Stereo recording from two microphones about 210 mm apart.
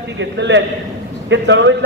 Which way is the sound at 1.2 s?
55° right (ahead or behind).